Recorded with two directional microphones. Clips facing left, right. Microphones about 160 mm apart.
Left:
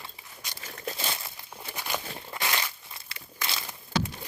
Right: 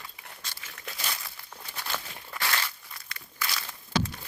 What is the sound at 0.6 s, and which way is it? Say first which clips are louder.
Crumpling: left 8 dB; 35° left (ahead or behind).